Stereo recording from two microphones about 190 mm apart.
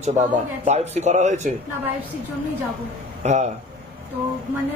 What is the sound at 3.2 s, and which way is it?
Speech, 35° right (ahead or behind).